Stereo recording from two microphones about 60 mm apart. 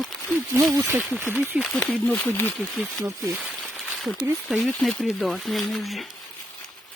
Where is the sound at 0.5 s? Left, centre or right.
Right.